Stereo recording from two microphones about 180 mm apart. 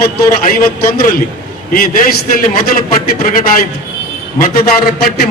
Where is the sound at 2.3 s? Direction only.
55° left (ahead or behind).